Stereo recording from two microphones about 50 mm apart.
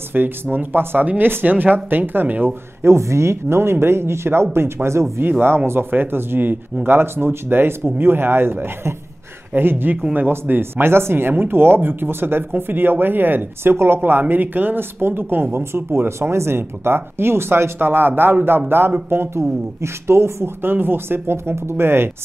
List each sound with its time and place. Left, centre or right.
0.1 s speech: right
2.8 s speech: right
14.2 s speech: right
19.8 s speech: right
20.6 s speech: right